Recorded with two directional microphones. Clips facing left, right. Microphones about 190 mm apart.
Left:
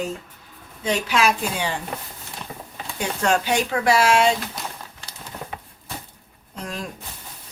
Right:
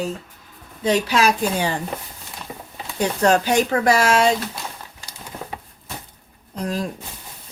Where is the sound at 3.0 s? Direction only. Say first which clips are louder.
Right 4 dB; 40° right (ahead or behind).